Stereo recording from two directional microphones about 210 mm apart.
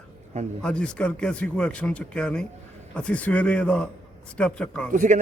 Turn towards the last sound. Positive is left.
turn(degrees=-35)  # may be behind; listen again after turning